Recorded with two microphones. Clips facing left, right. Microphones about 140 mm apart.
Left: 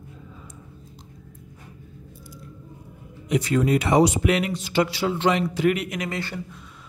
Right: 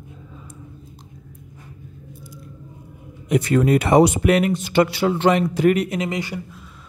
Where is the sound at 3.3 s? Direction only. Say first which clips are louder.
Right 4 dB; 55° right (ahead or behind).